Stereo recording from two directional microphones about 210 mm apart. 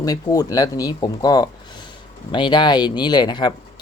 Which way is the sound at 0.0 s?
15° left (ahead or behind).